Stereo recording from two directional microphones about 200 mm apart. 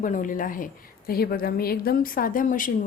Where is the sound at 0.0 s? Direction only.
40° left (ahead or behind).